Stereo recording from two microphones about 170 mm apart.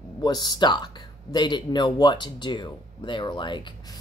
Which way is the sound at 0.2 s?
25° left (ahead or behind).